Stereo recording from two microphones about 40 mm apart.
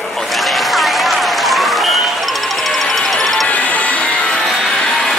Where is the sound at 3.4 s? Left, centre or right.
Left.